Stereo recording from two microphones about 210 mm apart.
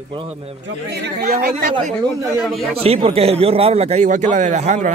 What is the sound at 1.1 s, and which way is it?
Speech, 45° right (ahead or behind).